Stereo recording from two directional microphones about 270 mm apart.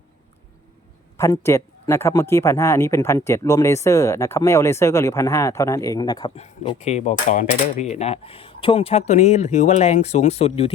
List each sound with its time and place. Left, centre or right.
1.1 s speech: centre